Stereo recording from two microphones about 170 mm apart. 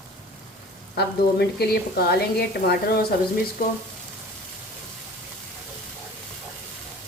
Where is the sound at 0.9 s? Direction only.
70° left (ahead or behind).